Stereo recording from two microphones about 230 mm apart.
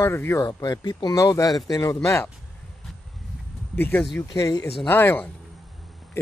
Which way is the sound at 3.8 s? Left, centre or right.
Centre.